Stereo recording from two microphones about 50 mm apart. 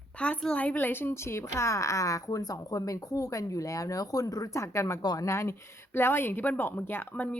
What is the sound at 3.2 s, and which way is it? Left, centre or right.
Speech, left.